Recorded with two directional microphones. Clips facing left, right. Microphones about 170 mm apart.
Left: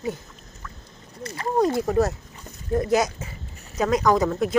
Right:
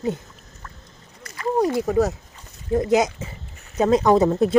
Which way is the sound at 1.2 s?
30° left (ahead or behind).